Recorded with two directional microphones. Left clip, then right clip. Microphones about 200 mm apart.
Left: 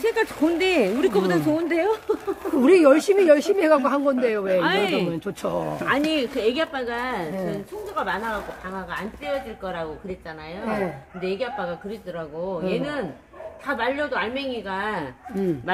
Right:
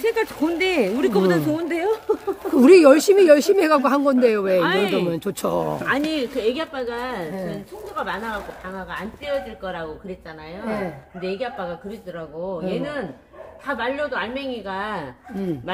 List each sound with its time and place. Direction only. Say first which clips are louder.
0.0 s speech: even; 10° right (ahead or behind)
2.5 s speech: right 4 dB; 45° right (ahead or behind)
4.5 s speech: right 2 dB; 10° right (ahead or behind)
5.0 s speech: right 3 dB; 50° right (ahead or behind)
5.9 s speech: even; 5° right (ahead or behind)
12.6 s a woman's voice: left 1 dB; 10° left (ahead or behind)